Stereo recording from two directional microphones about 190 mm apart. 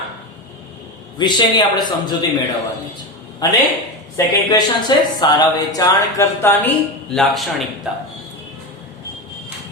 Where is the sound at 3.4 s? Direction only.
20° left (ahead or behind); by 8.0 s 5° right (ahead or behind).